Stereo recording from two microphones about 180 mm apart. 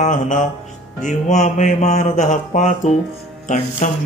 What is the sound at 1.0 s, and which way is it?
Speech, 40° left (ahead or behind).